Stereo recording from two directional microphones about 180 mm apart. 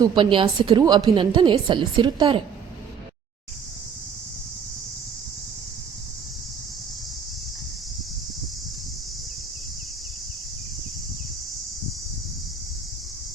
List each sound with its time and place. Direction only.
0.0 s a woman's voice: 25° right (ahead or behind)